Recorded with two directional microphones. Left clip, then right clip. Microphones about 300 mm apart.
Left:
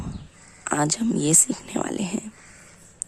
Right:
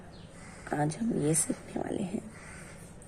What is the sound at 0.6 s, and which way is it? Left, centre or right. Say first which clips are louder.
Speech: left 8 dB; left.